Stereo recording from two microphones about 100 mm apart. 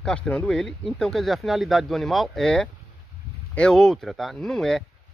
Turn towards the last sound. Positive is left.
turn(degrees=5)  # may be behind; listen again after turning